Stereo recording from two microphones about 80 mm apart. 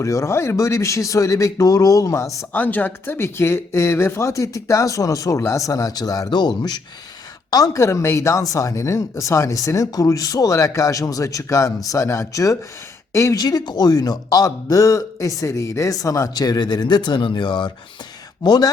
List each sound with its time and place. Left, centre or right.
0.0 s speech: left
2.5 s speech: left
7.5 s speech: left
13.4 s a man's voice: left
16.3 s speech: left
18.4 s speech: left